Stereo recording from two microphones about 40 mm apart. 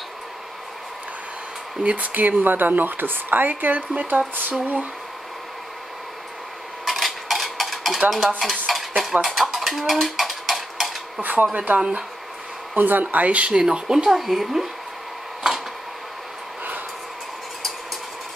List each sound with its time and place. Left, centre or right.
1.8 s speech: right
6.8 s cutlery: centre
8.4 s stir: centre
9.2 s dishes: centre
11.1 s speech: right
12.7 s speech: right
13.5 s speech: centre